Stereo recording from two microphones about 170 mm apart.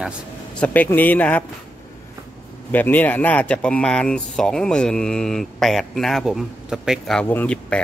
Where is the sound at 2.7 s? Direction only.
10° left (ahead or behind).